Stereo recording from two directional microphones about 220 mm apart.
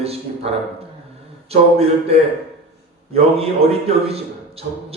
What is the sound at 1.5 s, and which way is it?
Speech, 25° right (ahead or behind).